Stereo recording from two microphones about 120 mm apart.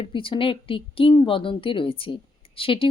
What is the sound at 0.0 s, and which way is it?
Speech, 45° left (ahead or behind).